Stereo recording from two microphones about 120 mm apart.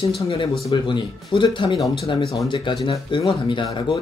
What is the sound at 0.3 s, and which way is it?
Speech, 45° left (ahead or behind).